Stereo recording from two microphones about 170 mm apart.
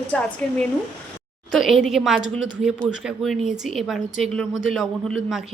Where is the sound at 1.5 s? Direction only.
Centre (ahead or behind).